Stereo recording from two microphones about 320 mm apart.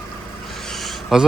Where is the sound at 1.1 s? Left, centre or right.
Centre.